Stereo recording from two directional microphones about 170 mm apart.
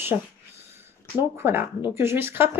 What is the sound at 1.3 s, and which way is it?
Speech, 15° right (ahead or behind).